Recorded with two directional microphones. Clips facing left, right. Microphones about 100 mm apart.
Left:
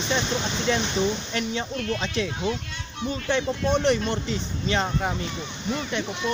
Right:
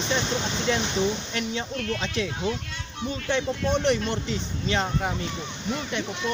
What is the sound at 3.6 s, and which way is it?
Speech, 40° left (ahead or behind).